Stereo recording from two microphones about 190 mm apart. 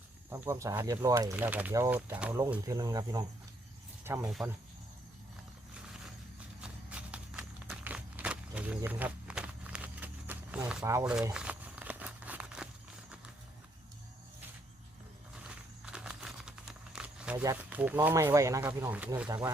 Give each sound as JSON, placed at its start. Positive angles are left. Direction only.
{"t": 0.3, "sound": "speech", "side_deg": -10}
{"t": 4.3, "sound": "speech", "side_deg": 0}
{"t": 6.6, "sound": "walk", "side_deg": -5}
{"t": 11.0, "sound": "crumpling", "side_deg": -5}
{"t": 15.4, "sound": "crumpling", "side_deg": -5}
{"t": 17.3, "sound": "speech", "side_deg": -20}